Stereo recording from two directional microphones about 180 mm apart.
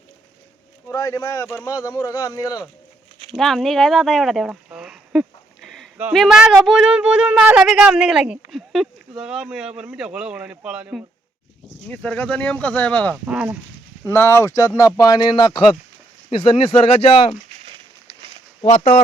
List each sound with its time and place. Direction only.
0.9 s speech: 20° left (ahead or behind)
3.3 s speech: centre (ahead or behind)
5.6 s a sound: centre (ahead or behind)
6.0 s speech: 5° right (ahead or behind)
11.9 s speech: 10° left (ahead or behind)
13.2 s speech: 10° right (ahead or behind)
14.0 s speech: 15° left (ahead or behind); by 17.3 s 30° left (ahead or behind)
18.6 s speech: 40° left (ahead or behind)